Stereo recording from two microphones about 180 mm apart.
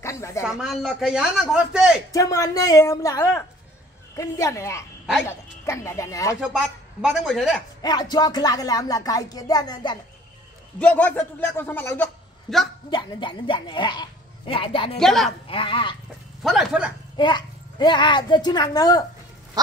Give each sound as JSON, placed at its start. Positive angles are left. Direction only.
{"t": 0.0, "sound": "a sound", "side_deg": 15}
{"t": 0.4, "sound": "speech", "side_deg": -5}
{"t": 2.1, "sound": "a man's voice", "side_deg": 20}
{"t": 6.4, "sound": "speech", "side_deg": -5}
{"t": 7.8, "sound": "speech", "side_deg": 20}
{"t": 10.8, "sound": "a man's voice", "side_deg": 10}
{"t": 12.9, "sound": "speech", "side_deg": 25}
{"t": 15.0, "sound": "speech", "side_deg": 0}
{"t": 15.4, "sound": "speech", "side_deg": 30}
{"t": 16.4, "sound": "speech", "side_deg": -5}
{"t": 17.2, "sound": "speech", "side_deg": 25}